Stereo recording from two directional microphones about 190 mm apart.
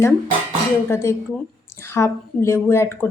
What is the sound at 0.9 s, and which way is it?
Speech, 15° left (ahead or behind).